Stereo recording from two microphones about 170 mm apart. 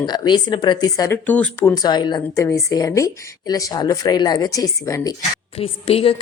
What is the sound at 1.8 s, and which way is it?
Speech, 25° left (ahead or behind).